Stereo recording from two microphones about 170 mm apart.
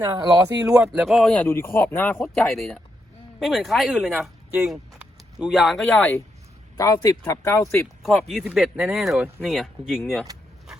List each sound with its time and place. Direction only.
0.0 s speech: 20° right (ahead or behind)
0.6 s speech: 5° right (ahead or behind)
6.7 s speech: 20° left (ahead or behind)
8.0 s speech: centre (ahead or behind)